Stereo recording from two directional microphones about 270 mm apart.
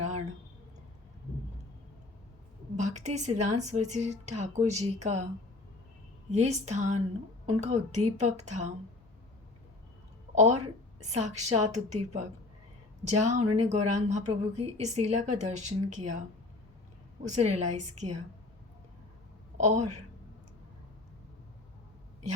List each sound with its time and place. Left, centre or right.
2.7 s a woman's voice: right
6.3 s a woman's voice: right
10.3 s a woman's voice: right
17.2 s a woman's voice: right
19.5 s a woman's voice: right